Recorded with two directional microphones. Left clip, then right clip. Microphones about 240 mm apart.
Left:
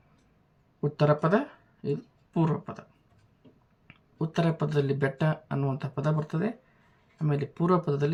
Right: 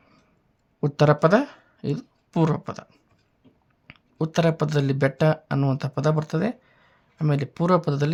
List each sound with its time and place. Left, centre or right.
0.8 s speech: right
3.8 s speech: right